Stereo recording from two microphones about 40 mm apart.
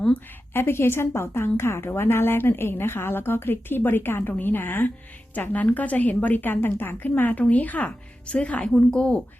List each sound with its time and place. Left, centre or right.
0.5 s a woman's voice: left
4.3 s a woman's voice: left
5.3 s a woman's voice: left
6.4 s a woman's voice: left
7.3 s a woman's voice: left
7.9 s a woman's voice: left